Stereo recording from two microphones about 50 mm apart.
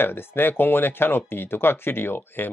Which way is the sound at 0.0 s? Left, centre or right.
Left.